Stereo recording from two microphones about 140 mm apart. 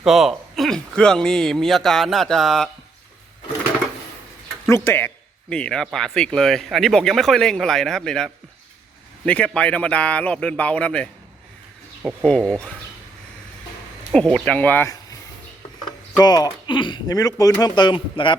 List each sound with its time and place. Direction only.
0.0 s a man's voice: centre (ahead or behind)
4.7 s a man's voice: 20° left (ahead or behind)
14.1 s speech: 5° left (ahead or behind)
16.1 s speech: 30° left (ahead or behind)